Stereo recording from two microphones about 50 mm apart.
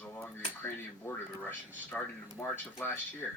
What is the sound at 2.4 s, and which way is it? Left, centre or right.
Speech, left.